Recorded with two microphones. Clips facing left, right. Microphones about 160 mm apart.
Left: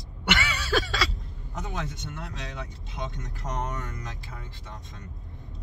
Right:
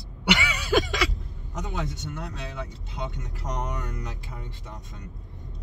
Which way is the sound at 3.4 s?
10° right (ahead or behind).